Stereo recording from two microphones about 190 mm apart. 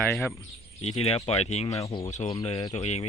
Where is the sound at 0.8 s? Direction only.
35° left (ahead or behind).